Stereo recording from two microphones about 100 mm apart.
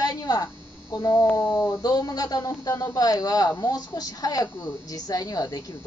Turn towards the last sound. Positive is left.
turn(degrees=40)  # may be behind; listen again after turning